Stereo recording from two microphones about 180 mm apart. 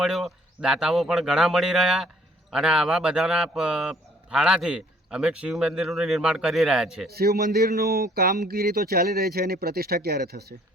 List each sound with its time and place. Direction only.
0.0 s speech: centre (ahead or behind)
7.1 s speech: 60° right (ahead or behind)